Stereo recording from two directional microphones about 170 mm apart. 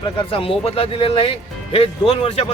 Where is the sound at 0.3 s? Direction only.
35° left (ahead or behind).